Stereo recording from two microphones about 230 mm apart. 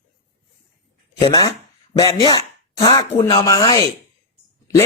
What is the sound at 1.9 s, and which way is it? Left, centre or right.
Speech, left.